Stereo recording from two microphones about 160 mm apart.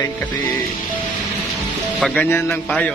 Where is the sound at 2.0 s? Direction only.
5° left (ahead or behind).